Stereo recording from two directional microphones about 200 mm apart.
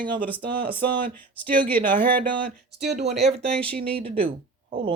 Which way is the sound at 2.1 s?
45° right (ahead or behind).